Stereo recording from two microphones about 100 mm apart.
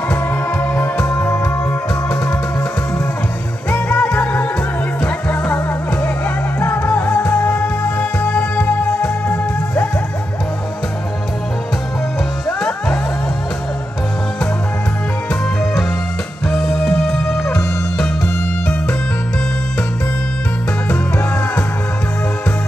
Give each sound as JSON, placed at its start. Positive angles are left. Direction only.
{"t": 0.5, "sound": "music", "side_deg": 15}
{"t": 3.7, "sound": "music", "side_deg": 15}
{"t": 12.4, "sound": "music", "side_deg": 10}
{"t": 16.4, "sound": "music", "side_deg": 5}
{"t": 20.9, "sound": "music", "side_deg": 15}